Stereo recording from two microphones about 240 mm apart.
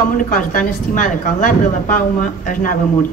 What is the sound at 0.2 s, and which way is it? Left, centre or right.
A woman's voice, left.